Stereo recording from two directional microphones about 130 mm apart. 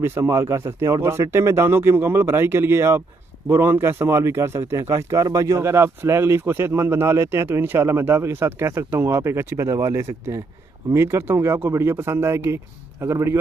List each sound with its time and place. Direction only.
0.0 s a man's voice: 20° right (ahead or behind)